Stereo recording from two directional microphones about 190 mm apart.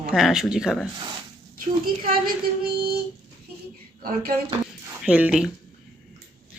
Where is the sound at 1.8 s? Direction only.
50° right (ahead or behind).